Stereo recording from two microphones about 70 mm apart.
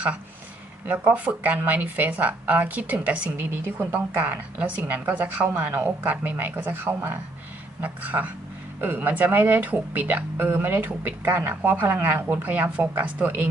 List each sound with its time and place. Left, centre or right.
0.8 s speech: right